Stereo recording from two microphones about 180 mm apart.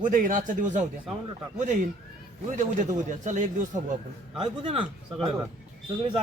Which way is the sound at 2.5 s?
45° right (ahead or behind).